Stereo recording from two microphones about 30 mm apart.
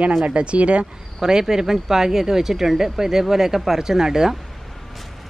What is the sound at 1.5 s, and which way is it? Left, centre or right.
Speech, centre.